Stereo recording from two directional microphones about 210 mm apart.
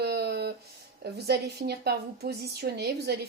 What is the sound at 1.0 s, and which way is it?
A woman's voice, 50° right (ahead or behind).